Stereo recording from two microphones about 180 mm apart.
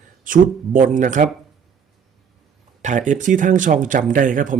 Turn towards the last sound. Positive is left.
turn(degrees=-50)  # may be behind; listen again after turning